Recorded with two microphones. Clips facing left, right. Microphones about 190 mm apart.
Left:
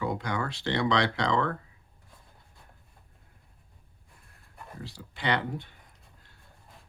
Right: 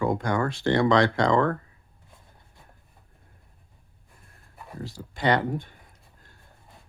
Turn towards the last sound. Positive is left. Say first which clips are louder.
# right 6 dB
turn(degrees=-45)  # may be behind; listen again after turning